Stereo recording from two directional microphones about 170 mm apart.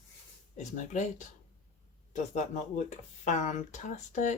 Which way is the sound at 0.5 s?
45° left (ahead or behind).